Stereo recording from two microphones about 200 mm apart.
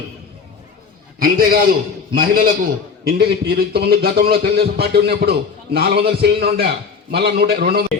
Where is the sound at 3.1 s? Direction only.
55° right (ahead or behind).